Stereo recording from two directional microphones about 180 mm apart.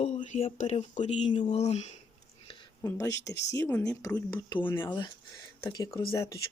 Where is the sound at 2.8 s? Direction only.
15° left (ahead or behind).